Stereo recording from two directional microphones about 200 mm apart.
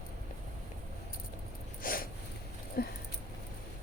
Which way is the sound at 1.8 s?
45° left (ahead or behind).